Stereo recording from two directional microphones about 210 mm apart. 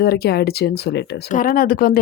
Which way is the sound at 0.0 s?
50° left (ahead or behind).